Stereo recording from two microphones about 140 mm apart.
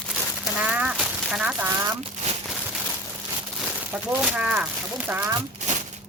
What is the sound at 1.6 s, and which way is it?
Speech, 20° right (ahead or behind).